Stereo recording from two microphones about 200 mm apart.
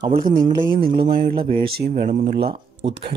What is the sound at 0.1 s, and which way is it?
Speech, 45° right (ahead or behind).